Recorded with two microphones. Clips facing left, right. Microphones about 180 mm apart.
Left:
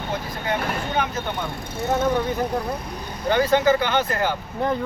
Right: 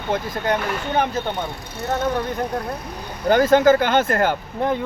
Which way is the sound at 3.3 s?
45° right (ahead or behind).